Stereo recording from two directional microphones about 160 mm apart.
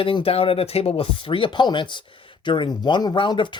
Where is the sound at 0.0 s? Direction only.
35° left (ahead or behind).